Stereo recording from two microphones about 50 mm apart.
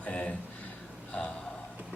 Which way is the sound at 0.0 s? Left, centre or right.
Left.